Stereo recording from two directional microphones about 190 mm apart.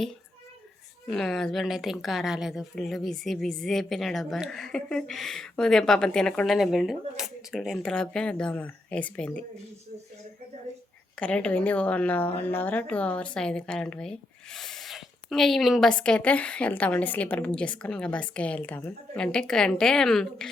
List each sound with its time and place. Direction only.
1.0 s a woman's voice: centre (ahead or behind)
11.2 s a woman's voice: 5° left (ahead or behind)